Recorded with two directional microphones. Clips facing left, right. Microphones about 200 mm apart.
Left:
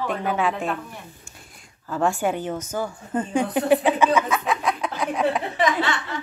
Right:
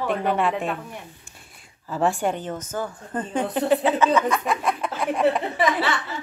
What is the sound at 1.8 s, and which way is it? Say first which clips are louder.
Speech: even; centre (ahead or behind).